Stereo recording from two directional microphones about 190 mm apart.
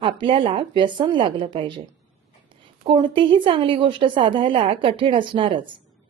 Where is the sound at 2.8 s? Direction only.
30° right (ahead or behind).